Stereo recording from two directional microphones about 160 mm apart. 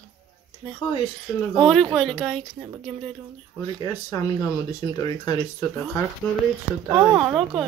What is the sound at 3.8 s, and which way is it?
Speech, 20° left (ahead or behind).